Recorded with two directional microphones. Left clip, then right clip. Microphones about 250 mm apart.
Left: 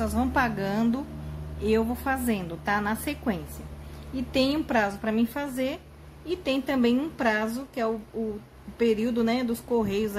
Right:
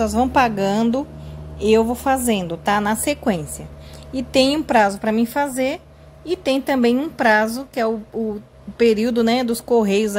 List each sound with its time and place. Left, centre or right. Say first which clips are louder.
0.0 s a woman's voice: right 9 dB; right